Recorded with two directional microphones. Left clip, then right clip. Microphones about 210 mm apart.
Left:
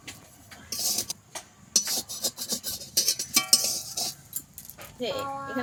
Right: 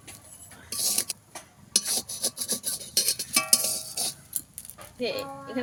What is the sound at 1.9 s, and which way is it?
Filing, 15° right (ahead or behind).